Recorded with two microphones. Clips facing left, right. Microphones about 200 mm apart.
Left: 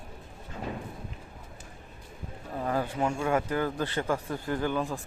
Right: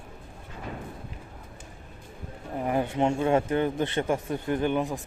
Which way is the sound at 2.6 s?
20° right (ahead or behind).